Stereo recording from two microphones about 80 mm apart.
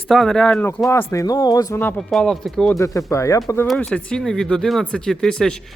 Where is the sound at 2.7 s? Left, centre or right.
Left.